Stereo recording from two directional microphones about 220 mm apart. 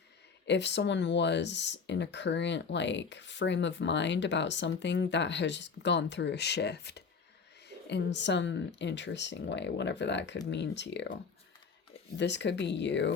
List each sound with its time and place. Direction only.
0.4 s speech: 50° left (ahead or behind)